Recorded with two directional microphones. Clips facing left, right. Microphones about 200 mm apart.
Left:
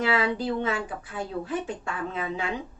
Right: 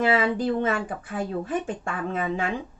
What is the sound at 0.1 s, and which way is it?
Speech, 50° right (ahead or behind).